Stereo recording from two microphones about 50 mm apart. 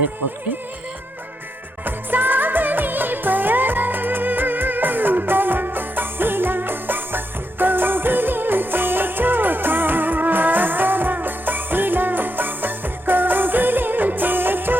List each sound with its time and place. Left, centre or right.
1.8 s music: right